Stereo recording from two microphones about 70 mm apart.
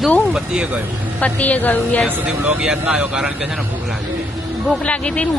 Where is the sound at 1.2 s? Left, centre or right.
Left.